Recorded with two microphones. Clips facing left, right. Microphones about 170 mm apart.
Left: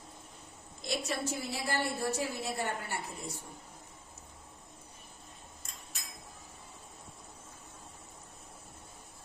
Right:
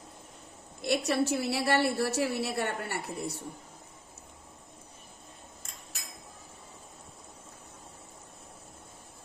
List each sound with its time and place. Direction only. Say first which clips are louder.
0.8 s a woman's voice: right 8 dB; 65° right (ahead or behind)